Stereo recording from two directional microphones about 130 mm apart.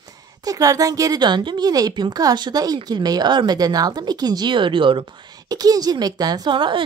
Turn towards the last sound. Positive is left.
turn(degrees=-40)  # may be behind; listen again after turning